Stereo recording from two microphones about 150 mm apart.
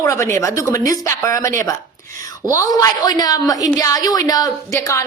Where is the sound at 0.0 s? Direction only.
20° left (ahead or behind).